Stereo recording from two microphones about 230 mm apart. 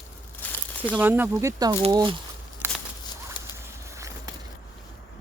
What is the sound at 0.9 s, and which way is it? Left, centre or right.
Speech, centre.